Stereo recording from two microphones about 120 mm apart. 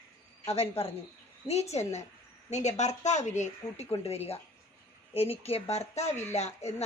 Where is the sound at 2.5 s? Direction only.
75° left (ahead or behind).